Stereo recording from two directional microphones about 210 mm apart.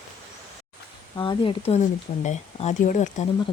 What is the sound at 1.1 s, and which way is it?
Speech, 25° left (ahead or behind).